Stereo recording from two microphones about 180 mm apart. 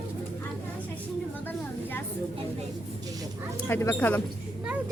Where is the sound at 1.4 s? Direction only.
10° left (ahead or behind).